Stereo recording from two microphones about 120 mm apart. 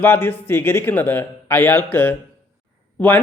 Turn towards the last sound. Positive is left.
turn(degrees=15)  # may be behind; listen again after turning